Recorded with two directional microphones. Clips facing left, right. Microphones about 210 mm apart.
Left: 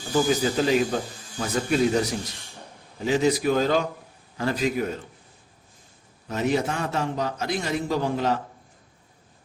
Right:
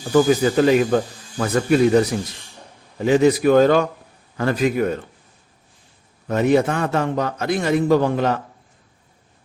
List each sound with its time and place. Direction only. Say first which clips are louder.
0.1 s a man's voice: right 7 dB; 60° right (ahead or behind)
6.2 s a man's voice: right 7 dB; 55° right (ahead or behind)